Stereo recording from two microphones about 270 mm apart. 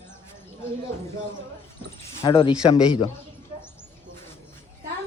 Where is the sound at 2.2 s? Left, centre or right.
Centre.